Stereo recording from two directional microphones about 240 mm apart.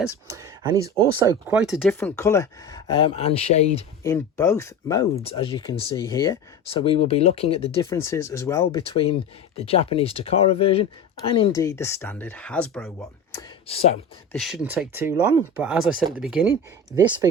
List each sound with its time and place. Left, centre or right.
0.0 s speech: centre
1.5 s speech: centre
1.9 s speech: centre; by 3.8 s left
4.0 s speech: centre
5.1 s speech: left
7.9 s speech: centre
8.7 s speech: left
11.5 s speech: centre
13.7 s speech: left
14.3 s speech: centre
16.9 s speech: centre